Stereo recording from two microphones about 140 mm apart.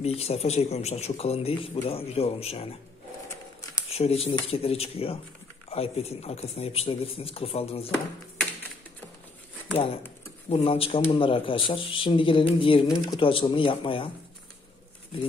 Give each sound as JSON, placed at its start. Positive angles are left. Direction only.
{"t": 0.0, "sound": "a man's voice", "side_deg": 45}
{"t": 3.9, "sound": "a man's voice", "side_deg": 45}
{"t": 10.5, "sound": "a man's voice", "side_deg": 45}
{"t": 12.8, "sound": "speech", "side_deg": 25}